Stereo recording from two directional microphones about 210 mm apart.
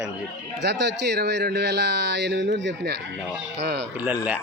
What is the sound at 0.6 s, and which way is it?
Speech, 55° right (ahead or behind).